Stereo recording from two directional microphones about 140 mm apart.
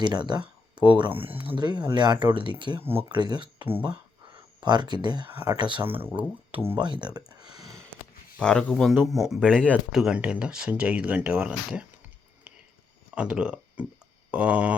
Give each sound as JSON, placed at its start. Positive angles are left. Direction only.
{"t": 0.0, "sound": "speech", "side_deg": -30}
{"t": 1.5, "sound": "speech", "side_deg": -30}
{"t": 2.8, "sound": "speech", "side_deg": -15}
{"t": 3.1, "sound": "speech", "side_deg": -30}
{"t": 3.8, "sound": "a sound", "side_deg": -35}
{"t": 5.5, "sound": "speech", "side_deg": -35}
{"t": 5.8, "sound": "speech", "side_deg": -15}
{"t": 6.7, "sound": "speech", "side_deg": -30}
{"t": 8.4, "sound": "speech", "side_deg": 5}
{"t": 10.0, "sound": "speech", "side_deg": -5}
{"t": 13.1, "sound": "speech", "side_deg": -5}